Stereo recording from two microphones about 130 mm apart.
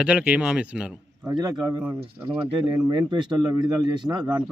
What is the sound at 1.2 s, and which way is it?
Speech, 30° right (ahead or behind).